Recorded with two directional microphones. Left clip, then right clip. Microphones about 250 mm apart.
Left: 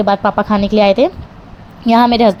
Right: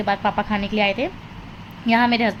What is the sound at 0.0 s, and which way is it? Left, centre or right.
Speech, left.